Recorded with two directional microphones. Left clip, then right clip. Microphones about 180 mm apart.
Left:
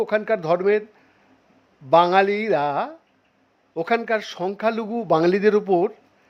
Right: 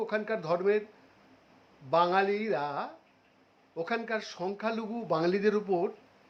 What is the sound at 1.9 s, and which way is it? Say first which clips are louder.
Speech: left 10 dB; 40° left (ahead or behind).